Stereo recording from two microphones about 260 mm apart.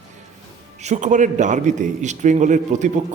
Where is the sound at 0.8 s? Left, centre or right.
Right.